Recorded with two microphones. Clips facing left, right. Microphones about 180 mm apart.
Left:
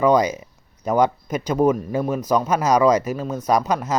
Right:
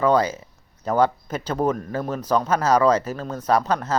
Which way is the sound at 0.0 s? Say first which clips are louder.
Left 2 dB; 15° left (ahead or behind).